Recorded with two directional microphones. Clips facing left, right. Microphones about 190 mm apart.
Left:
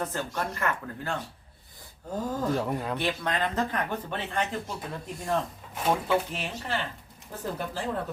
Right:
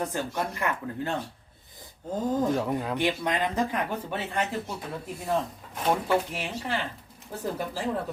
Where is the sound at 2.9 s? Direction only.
15° right (ahead or behind).